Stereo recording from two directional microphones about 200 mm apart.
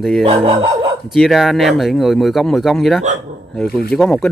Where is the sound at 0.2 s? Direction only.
30° right (ahead or behind).